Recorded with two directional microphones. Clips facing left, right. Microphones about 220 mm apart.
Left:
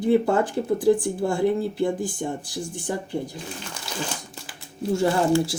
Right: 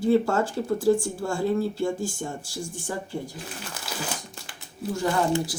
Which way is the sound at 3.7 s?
5° right (ahead or behind).